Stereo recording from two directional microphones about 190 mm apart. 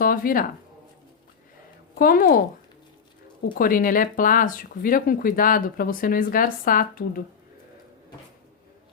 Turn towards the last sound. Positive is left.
turn(degrees=50)  # may be behind; listen again after turning